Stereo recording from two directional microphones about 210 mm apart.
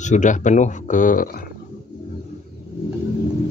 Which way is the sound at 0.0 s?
35° left (ahead or behind).